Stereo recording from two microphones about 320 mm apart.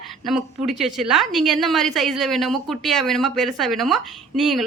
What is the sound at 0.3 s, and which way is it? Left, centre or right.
A woman's voice, centre.